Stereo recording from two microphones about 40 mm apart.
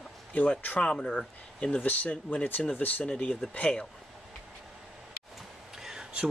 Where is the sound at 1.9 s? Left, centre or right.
Left.